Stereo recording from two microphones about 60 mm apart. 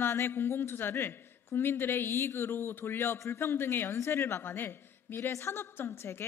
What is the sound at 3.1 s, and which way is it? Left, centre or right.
A man's voice, left.